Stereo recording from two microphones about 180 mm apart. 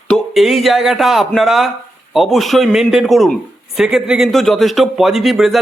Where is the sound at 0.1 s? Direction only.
Centre (ahead or behind).